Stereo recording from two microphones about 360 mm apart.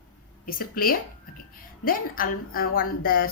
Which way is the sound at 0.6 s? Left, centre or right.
Left.